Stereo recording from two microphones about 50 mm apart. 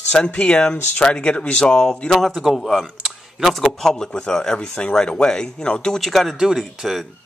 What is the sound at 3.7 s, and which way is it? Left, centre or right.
Speech, centre.